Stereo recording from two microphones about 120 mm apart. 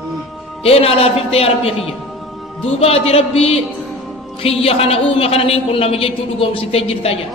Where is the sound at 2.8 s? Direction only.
55° left (ahead or behind).